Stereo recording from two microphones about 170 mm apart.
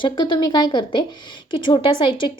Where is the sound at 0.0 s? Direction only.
25° left (ahead or behind).